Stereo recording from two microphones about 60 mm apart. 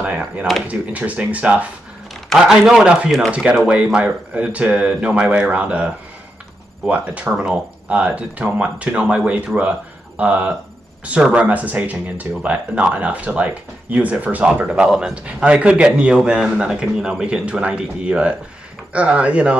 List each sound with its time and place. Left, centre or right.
0.7 s speech: right
2.3 s a man's voice: centre
7.4 s a man's voice: centre